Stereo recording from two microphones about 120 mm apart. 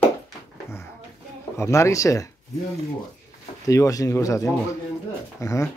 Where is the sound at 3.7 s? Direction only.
30° left (ahead or behind).